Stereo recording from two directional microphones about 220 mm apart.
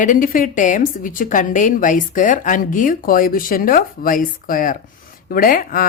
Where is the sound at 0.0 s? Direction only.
35° left (ahead or behind).